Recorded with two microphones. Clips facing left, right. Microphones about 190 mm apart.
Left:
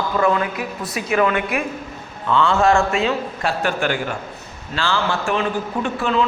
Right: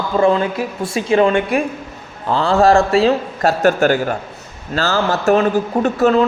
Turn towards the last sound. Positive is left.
turn(degrees=-40)  # may be behind; listen again after turning